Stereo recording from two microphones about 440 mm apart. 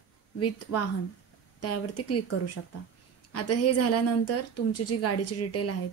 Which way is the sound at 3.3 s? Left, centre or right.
Left.